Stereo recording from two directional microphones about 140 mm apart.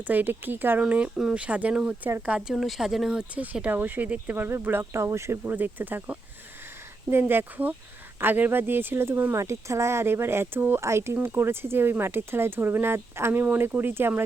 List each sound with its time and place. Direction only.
0.1 s speech: 15° right (ahead or behind)